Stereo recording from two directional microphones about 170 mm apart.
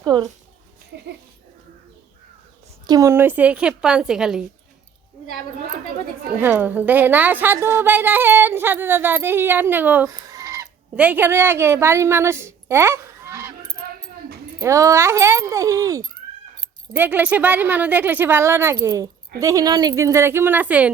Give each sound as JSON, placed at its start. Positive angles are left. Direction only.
{"t": 0.0, "sound": "speech", "side_deg": -25}
{"t": 0.9, "sound": "speech", "side_deg": -75}
{"t": 2.8, "sound": "a woman's voice", "side_deg": -20}
{"t": 6.4, "sound": "a woman's voice", "side_deg": -10}
{"t": 10.1, "sound": "fowl", "side_deg": -20}
{"t": 10.9, "sound": "a woman's voice", "side_deg": -10}
{"t": 14.6, "sound": "a woman's voice", "side_deg": -20}